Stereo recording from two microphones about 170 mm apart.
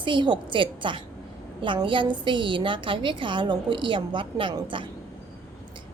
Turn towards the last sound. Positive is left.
turn(degrees=-30)  # may be behind; listen again after turning